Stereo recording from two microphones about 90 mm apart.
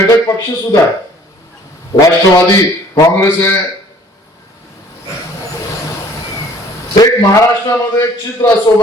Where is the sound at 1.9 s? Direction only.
35° left (ahead or behind).